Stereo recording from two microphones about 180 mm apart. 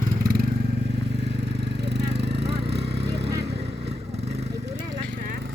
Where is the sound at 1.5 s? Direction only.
65° right (ahead or behind).